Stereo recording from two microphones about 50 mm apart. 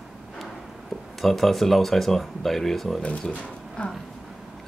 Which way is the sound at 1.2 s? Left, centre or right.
Centre.